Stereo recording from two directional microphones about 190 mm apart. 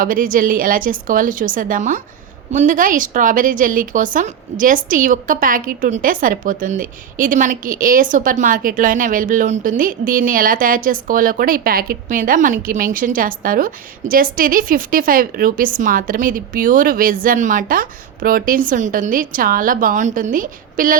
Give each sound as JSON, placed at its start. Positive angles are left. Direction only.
{"t": 0.0, "sound": "a woman's voice", "side_deg": -45}